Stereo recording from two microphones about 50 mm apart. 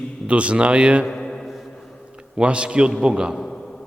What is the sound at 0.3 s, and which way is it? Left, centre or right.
Speech, right.